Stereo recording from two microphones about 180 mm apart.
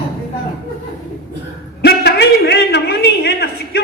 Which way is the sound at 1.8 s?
65° left (ahead or behind).